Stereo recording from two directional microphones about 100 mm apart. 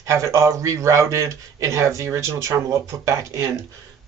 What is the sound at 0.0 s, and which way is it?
A man's voice, 30° right (ahead or behind).